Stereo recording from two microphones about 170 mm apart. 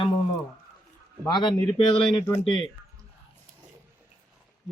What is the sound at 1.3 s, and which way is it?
Speech, 25° left (ahead or behind).